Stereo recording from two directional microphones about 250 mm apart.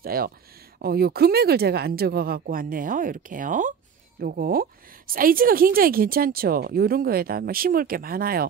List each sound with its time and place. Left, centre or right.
0.0 s a woman's voice: right